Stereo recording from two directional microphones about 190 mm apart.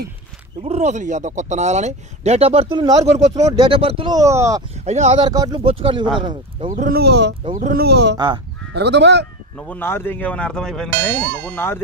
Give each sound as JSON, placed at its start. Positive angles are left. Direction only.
{"t": 0.6, "sound": "speech", "side_deg": -35}
{"t": 3.0, "sound": "speech", "side_deg": -35}
{"t": 4.7, "sound": "speech", "side_deg": -35}
{"t": 5.2, "sound": "speech", "side_deg": -20}
{"t": 6.7, "sound": "speech", "side_deg": -50}
{"t": 7.5, "sound": "speech", "side_deg": -50}
{"t": 9.6, "sound": "speech", "side_deg": 10}